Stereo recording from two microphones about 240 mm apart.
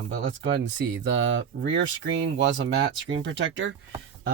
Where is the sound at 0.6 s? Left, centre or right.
Right.